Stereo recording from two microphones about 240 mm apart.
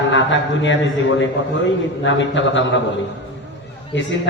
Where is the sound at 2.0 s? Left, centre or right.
Left.